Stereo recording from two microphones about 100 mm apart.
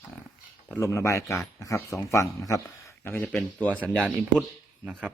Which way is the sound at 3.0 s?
20° left (ahead or behind).